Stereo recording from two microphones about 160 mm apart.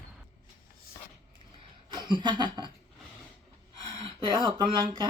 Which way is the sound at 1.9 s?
30° right (ahead or behind).